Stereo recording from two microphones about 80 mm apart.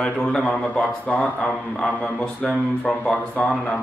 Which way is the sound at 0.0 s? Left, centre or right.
Centre.